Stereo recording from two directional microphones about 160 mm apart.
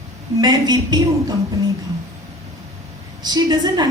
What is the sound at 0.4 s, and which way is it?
Speech, 25° right (ahead or behind).